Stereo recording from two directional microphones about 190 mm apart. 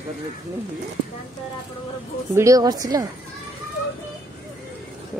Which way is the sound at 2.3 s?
15° right (ahead or behind).